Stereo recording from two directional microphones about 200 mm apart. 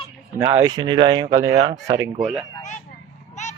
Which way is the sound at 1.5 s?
30° right (ahead or behind).